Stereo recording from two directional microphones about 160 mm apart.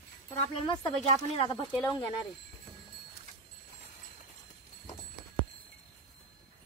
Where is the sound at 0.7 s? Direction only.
35° left (ahead or behind).